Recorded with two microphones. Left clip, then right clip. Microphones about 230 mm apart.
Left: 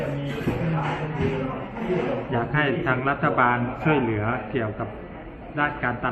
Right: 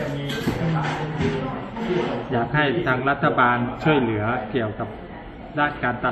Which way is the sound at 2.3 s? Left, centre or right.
Centre.